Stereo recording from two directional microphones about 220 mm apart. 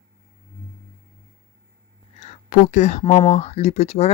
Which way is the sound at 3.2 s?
30° left (ahead or behind).